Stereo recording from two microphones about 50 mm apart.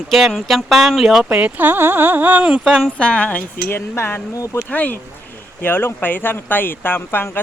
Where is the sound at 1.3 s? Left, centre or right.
Right.